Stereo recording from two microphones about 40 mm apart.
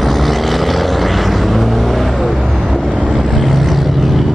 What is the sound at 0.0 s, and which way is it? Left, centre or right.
Vehicle, centre.